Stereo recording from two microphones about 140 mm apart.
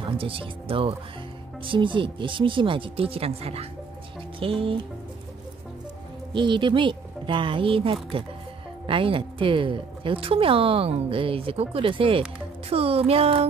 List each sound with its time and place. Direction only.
0.2 s a woman's voice: 40° right (ahead or behind)
6.3 s a woman's voice: 35° right (ahead or behind)